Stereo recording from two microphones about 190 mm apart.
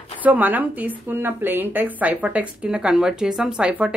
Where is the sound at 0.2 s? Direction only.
10° right (ahead or behind).